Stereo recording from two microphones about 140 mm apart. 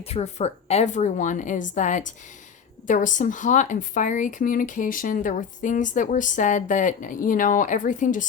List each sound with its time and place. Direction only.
0.0 s a woman's voice: 45° left (ahead or behind); by 8.3 s 65° left (ahead or behind)